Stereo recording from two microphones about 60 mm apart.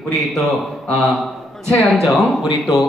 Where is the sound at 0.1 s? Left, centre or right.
Centre.